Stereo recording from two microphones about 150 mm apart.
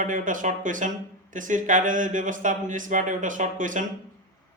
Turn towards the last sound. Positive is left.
turn(degrees=-60)  # may be behind; listen again after turning